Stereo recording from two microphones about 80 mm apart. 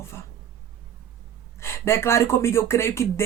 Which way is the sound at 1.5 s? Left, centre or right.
Left.